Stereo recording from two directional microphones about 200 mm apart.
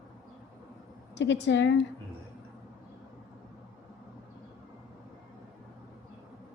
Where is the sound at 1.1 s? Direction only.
60° left (ahead or behind).